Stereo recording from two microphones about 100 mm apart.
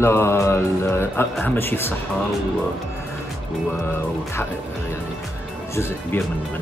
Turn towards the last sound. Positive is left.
turn(degrees=25)  # may be behind; listen again after turning